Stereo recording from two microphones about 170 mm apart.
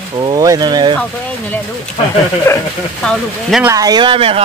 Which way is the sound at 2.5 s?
15° left (ahead or behind).